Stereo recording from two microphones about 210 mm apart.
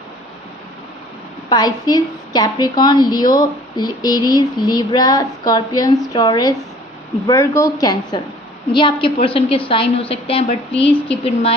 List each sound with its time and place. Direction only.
1.5 s a woman's voice: 20° left (ahead or behind)